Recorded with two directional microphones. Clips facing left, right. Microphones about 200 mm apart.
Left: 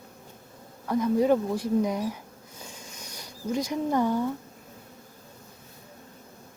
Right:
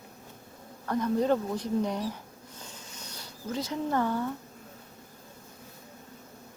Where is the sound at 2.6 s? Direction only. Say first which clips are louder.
Left 3 dB; 10° left (ahead or behind).